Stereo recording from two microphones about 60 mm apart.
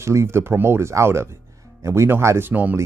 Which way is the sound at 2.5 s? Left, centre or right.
Right.